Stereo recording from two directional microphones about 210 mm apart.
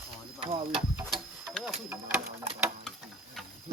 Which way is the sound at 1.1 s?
Centre (ahead or behind).